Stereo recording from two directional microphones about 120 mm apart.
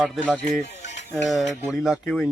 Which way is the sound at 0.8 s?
75° left (ahead or behind).